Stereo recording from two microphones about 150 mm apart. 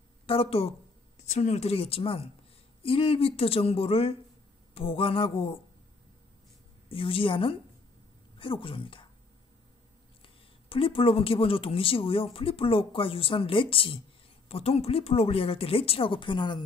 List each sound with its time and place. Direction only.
0.3 s speech: 40° left (ahead or behind)
6.9 s speech: 35° left (ahead or behind)
10.2 s speech: 35° left (ahead or behind)